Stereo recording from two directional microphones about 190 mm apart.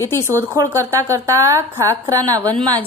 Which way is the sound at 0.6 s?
20° right (ahead or behind).